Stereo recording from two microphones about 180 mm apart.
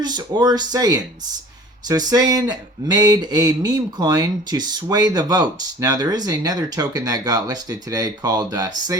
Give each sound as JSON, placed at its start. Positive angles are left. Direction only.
{"t": 0.0, "sound": "speech", "side_deg": -25}